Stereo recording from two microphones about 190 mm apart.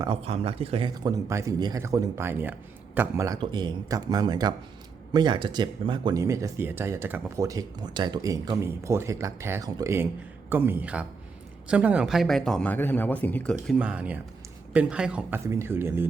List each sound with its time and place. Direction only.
0.0 s speech: 30° right (ahead or behind); by 3.3 s 10° right (ahead or behind)
3.3 s speech: 25° right (ahead or behind); by 13.7 s 5° left (ahead or behind)
13.7 s speech: 5° right (ahead or behind)